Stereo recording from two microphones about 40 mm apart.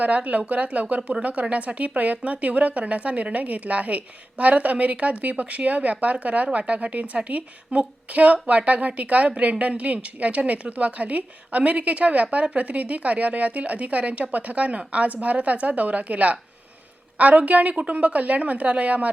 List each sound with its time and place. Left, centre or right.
0.0 s a woman's voice: right